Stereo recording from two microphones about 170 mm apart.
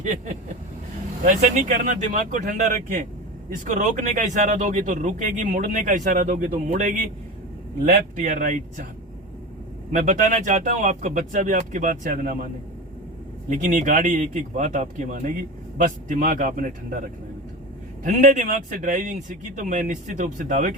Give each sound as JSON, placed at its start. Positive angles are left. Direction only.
{"t": 1.2, "sound": "speech", "side_deg": -45}
{"t": 8.1, "sound": "speech", "side_deg": -50}
{"t": 9.9, "sound": "speech", "side_deg": -45}
{"t": 13.5, "sound": "speech", "side_deg": -50}